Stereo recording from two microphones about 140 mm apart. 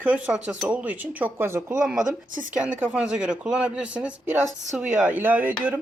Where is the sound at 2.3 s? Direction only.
70° right (ahead or behind).